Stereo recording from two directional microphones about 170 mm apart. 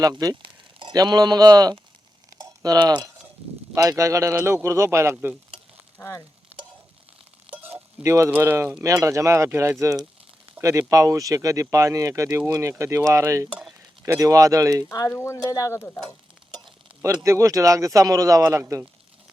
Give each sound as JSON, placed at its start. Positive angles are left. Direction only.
{"t": 0.0, "sound": "speech", "side_deg": -20}
{"t": 6.0, "sound": "speech", "side_deg": 15}
{"t": 7.5, "sound": "speech", "side_deg": -15}
{"t": 14.8, "sound": "speech", "side_deg": 15}
{"t": 17.2, "sound": "speech", "side_deg": -20}